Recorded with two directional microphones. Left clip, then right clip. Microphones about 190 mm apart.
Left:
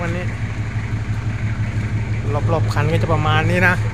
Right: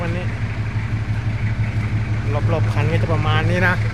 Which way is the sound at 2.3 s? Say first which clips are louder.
Left 3 dB; 20° left (ahead or behind).